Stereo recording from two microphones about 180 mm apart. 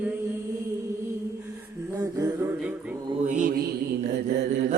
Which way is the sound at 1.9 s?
20° right (ahead or behind).